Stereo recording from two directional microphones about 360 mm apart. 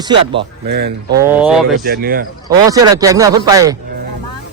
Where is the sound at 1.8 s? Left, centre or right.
Right.